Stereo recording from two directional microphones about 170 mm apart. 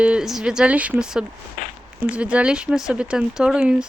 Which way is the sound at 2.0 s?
5° right (ahead or behind).